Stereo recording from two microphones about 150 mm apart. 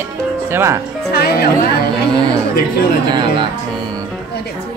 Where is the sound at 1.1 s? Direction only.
90° left.